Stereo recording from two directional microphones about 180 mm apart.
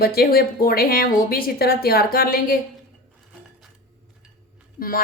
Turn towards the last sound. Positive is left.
turn(degrees=55)  # may be behind; listen again after turning